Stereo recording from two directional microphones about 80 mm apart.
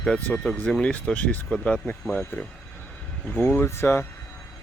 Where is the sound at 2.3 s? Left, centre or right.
Left.